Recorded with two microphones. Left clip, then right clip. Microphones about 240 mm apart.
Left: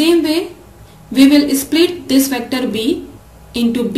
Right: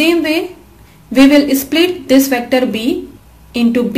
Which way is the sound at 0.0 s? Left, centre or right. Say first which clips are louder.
Right 1 dB; centre.